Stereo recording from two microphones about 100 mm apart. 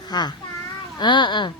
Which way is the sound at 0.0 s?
45° left (ahead or behind).